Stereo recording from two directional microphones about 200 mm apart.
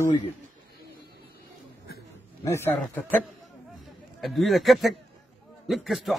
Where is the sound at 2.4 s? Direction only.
15° left (ahead or behind).